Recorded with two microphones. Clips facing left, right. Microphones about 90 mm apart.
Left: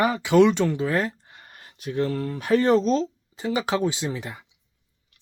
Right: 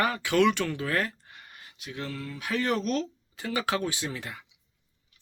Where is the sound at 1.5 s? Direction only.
45° left (ahead or behind).